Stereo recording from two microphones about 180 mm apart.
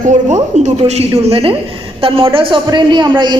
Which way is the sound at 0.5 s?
40° right (ahead or behind).